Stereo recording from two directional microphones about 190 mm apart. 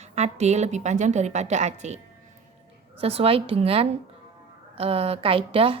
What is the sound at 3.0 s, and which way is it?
A woman's voice, 30° right (ahead or behind).